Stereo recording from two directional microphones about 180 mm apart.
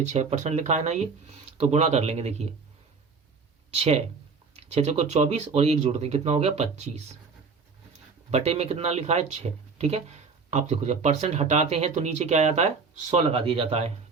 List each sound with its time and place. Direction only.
0.1 s speech: 40° right (ahead or behind)
3.7 s speech: 35° right (ahead or behind)
8.3 s speech: 35° right (ahead or behind)